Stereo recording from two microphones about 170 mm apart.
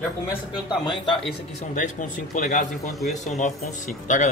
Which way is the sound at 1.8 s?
50° left (ahead or behind).